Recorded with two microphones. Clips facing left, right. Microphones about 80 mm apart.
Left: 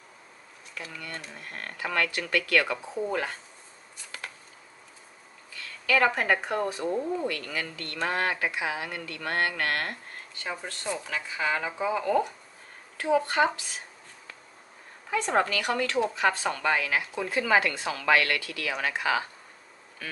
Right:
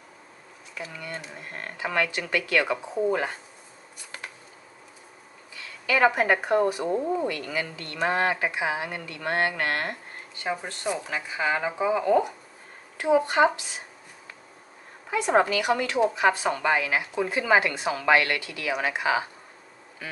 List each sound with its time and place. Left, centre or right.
0.9 s speech: centre
5.5 s speech: centre
15.0 s speech: centre